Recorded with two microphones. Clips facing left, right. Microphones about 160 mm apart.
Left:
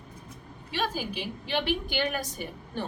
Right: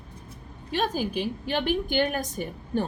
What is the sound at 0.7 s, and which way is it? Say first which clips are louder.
A woman's voice: right 4 dB; 45° right (ahead or behind).